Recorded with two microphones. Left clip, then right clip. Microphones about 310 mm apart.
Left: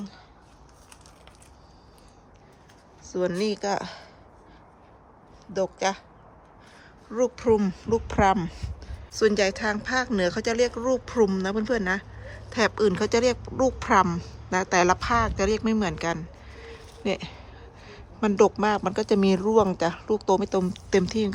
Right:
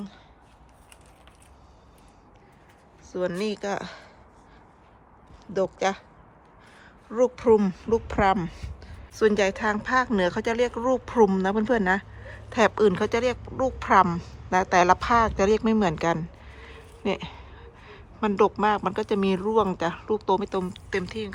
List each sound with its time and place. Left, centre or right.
3.0 s speech: centre
5.5 s speech: centre
7.1 s speech: centre